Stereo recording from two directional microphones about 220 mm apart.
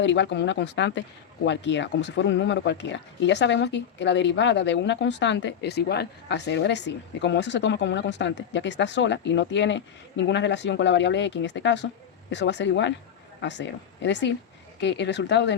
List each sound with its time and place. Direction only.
0.0 s speech: 55° left (ahead or behind)